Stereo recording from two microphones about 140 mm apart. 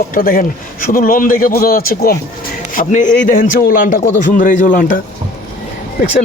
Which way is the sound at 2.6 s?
70° left (ahead or behind).